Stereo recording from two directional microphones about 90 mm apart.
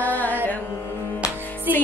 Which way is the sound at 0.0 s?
20° left (ahead or behind).